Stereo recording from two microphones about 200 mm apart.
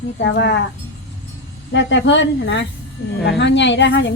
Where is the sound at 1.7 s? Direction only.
65° left (ahead or behind).